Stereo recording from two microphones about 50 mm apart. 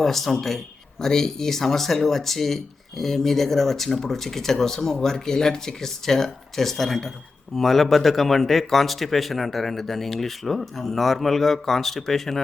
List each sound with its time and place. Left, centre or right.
0.0 s speech: centre